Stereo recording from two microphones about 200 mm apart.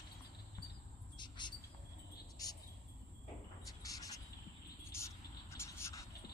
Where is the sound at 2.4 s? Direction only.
20° left (ahead or behind).